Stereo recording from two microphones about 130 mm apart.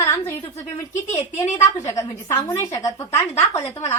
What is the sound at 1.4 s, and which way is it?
A woman's voice, 20° left (ahead or behind).